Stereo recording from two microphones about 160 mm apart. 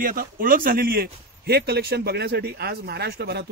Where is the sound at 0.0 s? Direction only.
65° right (ahead or behind).